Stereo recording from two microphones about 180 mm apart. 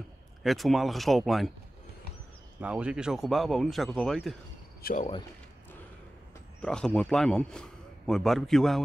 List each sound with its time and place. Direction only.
0.4 s speech: centre (ahead or behind)
2.6 s speech: 5° right (ahead or behind)
4.8 s speech: 45° left (ahead or behind)
6.6 s speech: 5° left (ahead or behind)